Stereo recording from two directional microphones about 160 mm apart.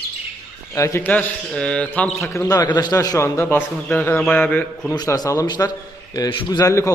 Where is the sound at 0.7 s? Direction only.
20° left (ahead or behind).